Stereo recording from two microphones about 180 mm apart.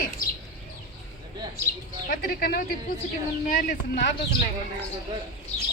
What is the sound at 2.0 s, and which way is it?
Speech, 50° left (ahead or behind).